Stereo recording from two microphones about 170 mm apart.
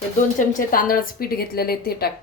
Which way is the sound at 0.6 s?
55° left (ahead or behind).